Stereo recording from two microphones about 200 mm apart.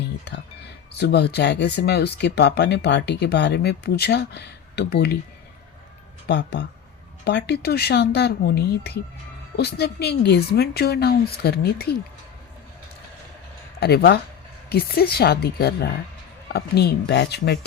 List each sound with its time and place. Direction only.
0.9 s speech: 55° left (ahead or behind)
6.2 s speech: 60° left (ahead or behind)
13.7 s speech: 55° left (ahead or behind)